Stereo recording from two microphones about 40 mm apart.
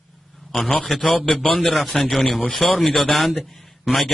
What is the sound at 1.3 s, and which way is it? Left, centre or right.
Speech, left.